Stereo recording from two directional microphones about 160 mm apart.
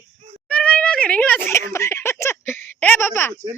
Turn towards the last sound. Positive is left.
turn(degrees=15)  # may be behind; listen again after turning